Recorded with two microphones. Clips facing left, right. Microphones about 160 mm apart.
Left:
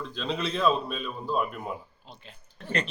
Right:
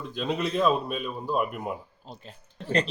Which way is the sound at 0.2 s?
15° right (ahead or behind).